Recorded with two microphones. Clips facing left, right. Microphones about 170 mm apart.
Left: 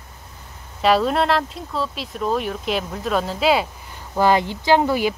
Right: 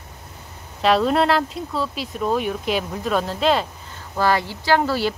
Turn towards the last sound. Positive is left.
turn(degrees=15)  # may be behind; listen again after turning